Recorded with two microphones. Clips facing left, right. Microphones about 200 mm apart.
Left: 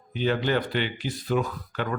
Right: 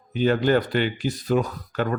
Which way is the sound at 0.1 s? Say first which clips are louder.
Right 5 dB; 45° right (ahead or behind).